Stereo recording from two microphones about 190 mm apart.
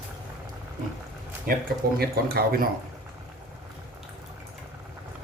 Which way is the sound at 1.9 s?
55° right (ahead or behind).